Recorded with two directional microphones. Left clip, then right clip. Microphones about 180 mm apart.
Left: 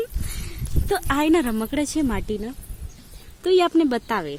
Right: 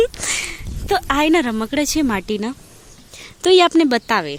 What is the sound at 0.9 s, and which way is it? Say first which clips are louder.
Speech: right 4 dB; 10° right (ahead or behind).